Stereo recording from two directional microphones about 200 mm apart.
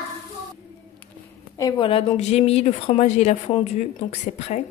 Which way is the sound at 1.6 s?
25° left (ahead or behind).